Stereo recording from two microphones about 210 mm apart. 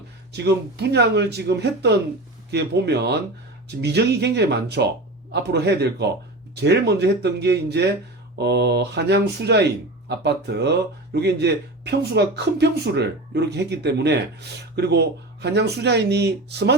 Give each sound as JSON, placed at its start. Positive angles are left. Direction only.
{"t": 0.3, "sound": "speech", "side_deg": -50}